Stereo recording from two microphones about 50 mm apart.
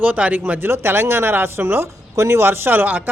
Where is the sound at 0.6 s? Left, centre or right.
Right.